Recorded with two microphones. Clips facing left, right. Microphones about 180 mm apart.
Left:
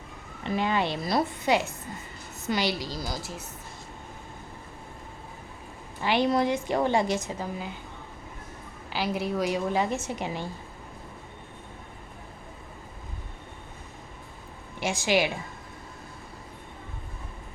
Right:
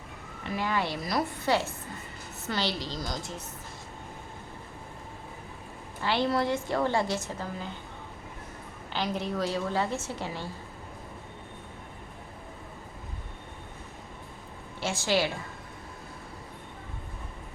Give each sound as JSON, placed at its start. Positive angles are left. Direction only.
{"t": 0.4, "sound": "a woman's voice", "side_deg": 20}
{"t": 6.0, "sound": "a woman's voice", "side_deg": 15}
{"t": 8.9, "sound": "a woman's voice", "side_deg": 10}
{"t": 14.8, "sound": "a woman's voice", "side_deg": 15}